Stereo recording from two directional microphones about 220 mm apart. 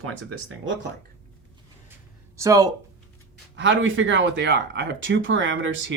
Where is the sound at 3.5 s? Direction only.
55° right (ahead or behind).